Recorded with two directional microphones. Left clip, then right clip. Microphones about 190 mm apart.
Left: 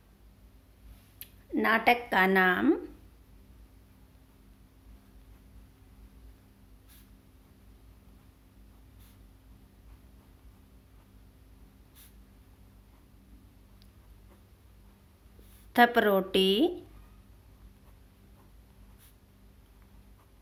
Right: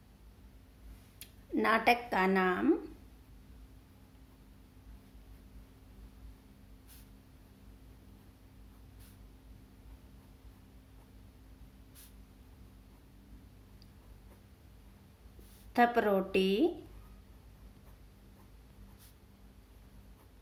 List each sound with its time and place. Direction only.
1.5 s a woman's voice: 15° left (ahead or behind); by 2.7 s 40° left (ahead or behind)
15.7 s a woman's voice: 35° left (ahead or behind)